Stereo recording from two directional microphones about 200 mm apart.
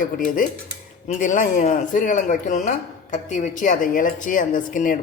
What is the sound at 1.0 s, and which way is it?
Speech, 40° left (ahead or behind).